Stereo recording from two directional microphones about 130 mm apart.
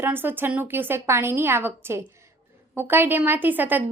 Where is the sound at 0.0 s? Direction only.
15° right (ahead or behind).